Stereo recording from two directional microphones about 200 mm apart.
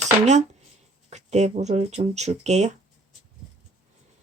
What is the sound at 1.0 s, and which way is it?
Speech, 35° right (ahead or behind).